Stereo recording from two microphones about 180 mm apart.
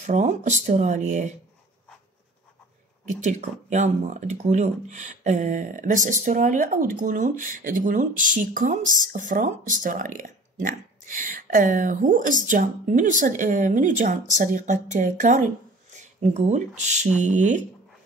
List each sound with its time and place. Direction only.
0.0 s speech: 40° right (ahead or behind)
3.1 s speech: 40° right (ahead or behind)